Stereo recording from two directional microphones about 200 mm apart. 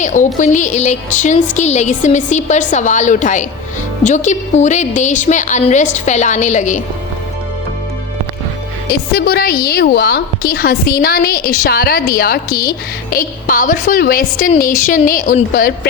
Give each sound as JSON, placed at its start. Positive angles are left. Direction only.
{"t": 0.0, "sound": "speech", "side_deg": 40}
{"t": 8.9, "sound": "a woman's voice", "side_deg": 50}